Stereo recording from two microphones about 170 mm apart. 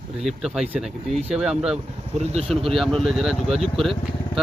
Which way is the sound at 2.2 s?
40° right (ahead or behind).